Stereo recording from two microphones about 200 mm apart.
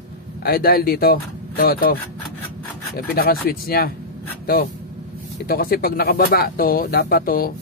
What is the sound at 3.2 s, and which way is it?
Speech, 50° left (ahead or behind).